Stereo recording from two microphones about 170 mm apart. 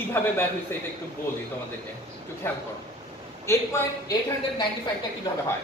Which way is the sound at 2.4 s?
15° left (ahead or behind).